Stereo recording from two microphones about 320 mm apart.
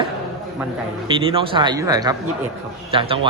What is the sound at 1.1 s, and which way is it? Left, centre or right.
Speech, centre.